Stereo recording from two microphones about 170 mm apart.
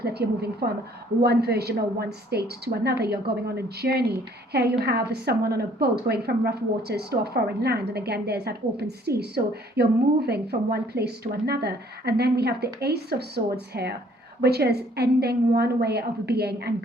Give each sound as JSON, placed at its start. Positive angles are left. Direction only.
{"t": 0.0, "sound": "a woman's voice", "side_deg": -70}